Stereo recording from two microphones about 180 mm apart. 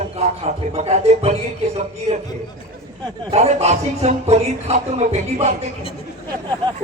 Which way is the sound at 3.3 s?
35° right (ahead or behind).